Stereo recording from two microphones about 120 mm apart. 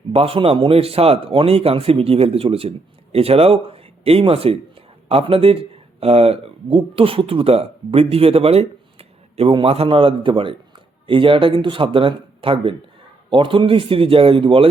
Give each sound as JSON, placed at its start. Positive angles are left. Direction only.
{"t": 0.1, "sound": "speech", "side_deg": -55}